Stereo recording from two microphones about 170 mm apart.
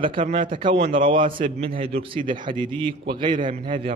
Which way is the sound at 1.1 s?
30° right (ahead or behind).